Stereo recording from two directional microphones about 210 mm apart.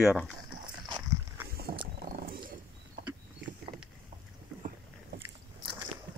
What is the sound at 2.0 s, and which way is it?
Wild animals, 45° right (ahead or behind).